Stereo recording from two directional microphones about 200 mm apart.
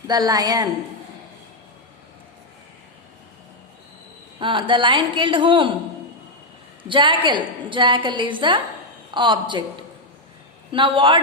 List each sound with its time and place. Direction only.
0.1 s a woman's voice: 20° right (ahead or behind)
4.4 s a woman's voice: 25° right (ahead or behind)
6.8 s a woman's voice: 25° right (ahead or behind)
10.7 s a woman's voice: 25° right (ahead or behind)